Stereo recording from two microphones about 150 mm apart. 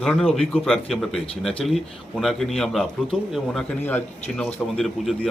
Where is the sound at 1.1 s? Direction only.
40° left (ahead or behind).